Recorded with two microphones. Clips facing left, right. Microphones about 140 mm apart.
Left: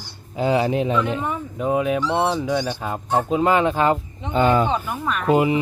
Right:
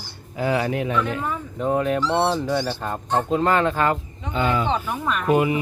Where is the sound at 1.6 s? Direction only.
5° left (ahead or behind).